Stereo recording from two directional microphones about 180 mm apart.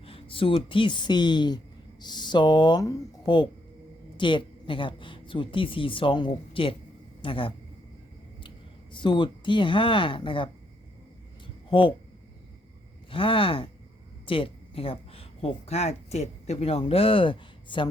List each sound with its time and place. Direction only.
0.0 s a woman's voice: 30° left (ahead or behind)
11.7 s a woman's voice: 30° left (ahead or behind)
13.1 s a woman's voice: 30° left (ahead or behind)